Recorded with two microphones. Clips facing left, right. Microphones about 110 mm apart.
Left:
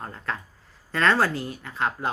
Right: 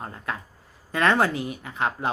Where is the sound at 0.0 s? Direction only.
15° right (ahead or behind).